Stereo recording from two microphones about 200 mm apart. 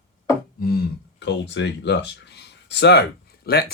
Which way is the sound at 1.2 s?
60° left (ahead or behind).